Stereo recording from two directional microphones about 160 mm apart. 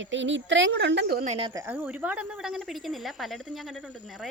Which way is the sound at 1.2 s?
40° right (ahead or behind).